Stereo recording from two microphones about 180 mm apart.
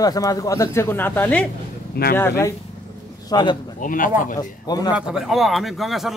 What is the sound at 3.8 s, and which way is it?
Speech, 50° left (ahead or behind).